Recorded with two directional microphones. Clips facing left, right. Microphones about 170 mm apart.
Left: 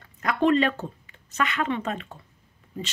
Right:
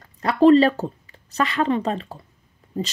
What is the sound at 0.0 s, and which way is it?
Speech, 35° right (ahead or behind).